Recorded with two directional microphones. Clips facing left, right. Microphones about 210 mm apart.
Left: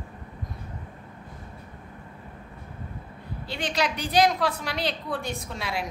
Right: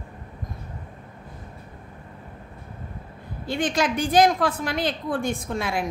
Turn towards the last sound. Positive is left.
turn(degrees=-50)  # may be behind; listen again after turning